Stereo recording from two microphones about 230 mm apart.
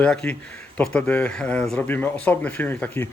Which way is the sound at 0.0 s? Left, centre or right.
Centre.